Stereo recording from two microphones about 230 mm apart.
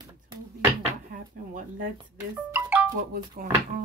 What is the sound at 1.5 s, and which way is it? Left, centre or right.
Speech, right.